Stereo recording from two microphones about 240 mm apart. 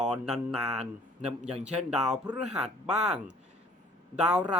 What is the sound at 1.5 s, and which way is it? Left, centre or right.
Speech, right.